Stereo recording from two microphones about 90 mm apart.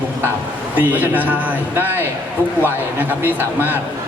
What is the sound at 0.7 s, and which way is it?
Speech, 20° right (ahead or behind).